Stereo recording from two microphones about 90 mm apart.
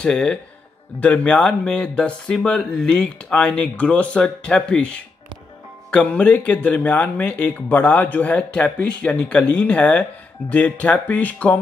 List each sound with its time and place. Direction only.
0.0 s speech: 10° left (ahead or behind)